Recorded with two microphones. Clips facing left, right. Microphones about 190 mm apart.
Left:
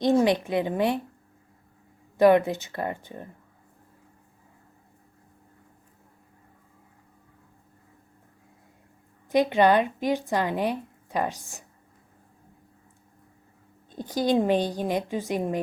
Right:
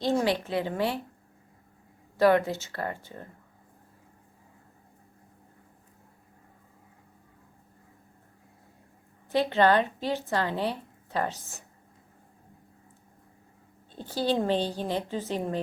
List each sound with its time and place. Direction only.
0.0 s a woman's voice: 20° left (ahead or behind)
2.1 s speech: 20° left (ahead or behind)
9.3 s speech: 15° left (ahead or behind)
13.9 s speech: 15° left (ahead or behind)